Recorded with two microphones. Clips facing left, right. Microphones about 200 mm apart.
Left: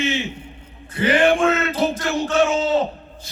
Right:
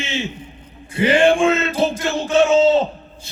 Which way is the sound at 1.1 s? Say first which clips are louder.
Right 2 dB; 25° right (ahead or behind).